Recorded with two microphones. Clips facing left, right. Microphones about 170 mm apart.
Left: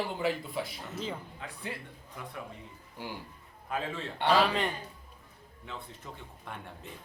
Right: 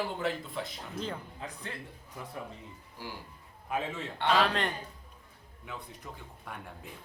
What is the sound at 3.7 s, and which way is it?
Speech, 15° right (ahead or behind).